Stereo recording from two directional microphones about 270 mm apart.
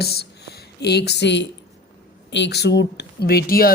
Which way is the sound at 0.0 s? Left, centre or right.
Left.